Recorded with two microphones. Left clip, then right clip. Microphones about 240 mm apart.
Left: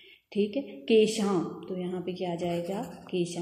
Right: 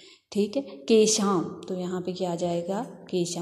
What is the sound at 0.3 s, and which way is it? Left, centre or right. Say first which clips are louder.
A woman's voice: right 2 dB; right.